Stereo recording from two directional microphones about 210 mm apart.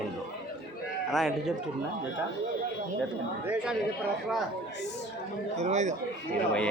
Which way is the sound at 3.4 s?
5° right (ahead or behind).